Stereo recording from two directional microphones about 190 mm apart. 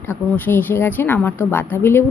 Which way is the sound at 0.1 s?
10° left (ahead or behind).